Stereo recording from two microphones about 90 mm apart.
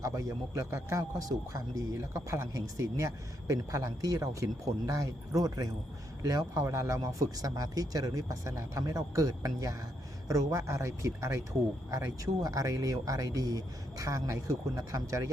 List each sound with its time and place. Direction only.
0.0 s speech: 35° right (ahead or behind)